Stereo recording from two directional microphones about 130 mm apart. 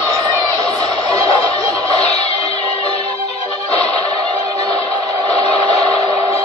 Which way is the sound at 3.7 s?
10° left (ahead or behind).